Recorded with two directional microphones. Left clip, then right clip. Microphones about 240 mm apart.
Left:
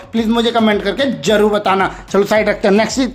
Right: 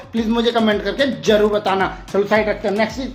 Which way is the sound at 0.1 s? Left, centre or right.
Centre.